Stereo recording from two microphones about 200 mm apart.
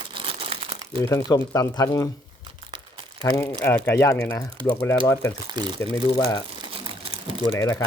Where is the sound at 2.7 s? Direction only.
25° right (ahead or behind).